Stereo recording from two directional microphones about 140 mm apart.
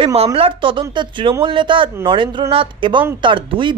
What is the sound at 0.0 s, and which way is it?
A woman's voice, 45° right (ahead or behind).